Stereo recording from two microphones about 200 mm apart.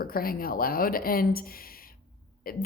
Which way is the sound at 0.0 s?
45° left (ahead or behind).